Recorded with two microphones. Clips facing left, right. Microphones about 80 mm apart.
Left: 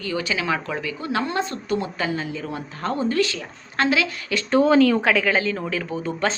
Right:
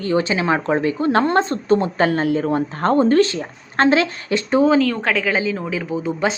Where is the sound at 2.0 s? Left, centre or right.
Right.